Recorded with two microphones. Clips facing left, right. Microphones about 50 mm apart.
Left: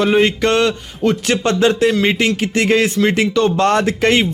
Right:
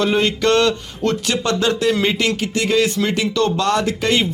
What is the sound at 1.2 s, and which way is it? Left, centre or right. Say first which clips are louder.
A man's voice: left 6 dB; left.